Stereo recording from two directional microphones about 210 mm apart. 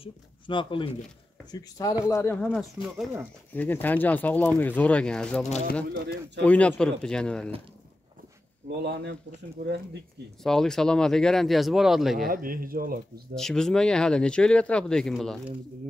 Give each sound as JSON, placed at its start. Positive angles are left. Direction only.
{"t": 0.0, "sound": "speech", "side_deg": 25}
{"t": 8.8, "sound": "speech", "side_deg": -50}
{"t": 10.4, "sound": "speech", "side_deg": 0}
{"t": 12.3, "sound": "speech", "side_deg": -40}
{"t": 13.3, "sound": "speech", "side_deg": 0}